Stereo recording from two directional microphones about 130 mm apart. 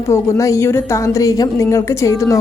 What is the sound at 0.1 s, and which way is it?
A woman's voice, 25° left (ahead or behind).